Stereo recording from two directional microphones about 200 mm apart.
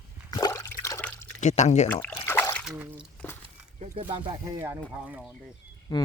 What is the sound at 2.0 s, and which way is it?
Trickle, 10° left (ahead or behind).